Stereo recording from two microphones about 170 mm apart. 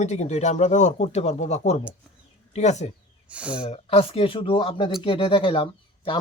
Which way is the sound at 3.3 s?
5° right (ahead or behind).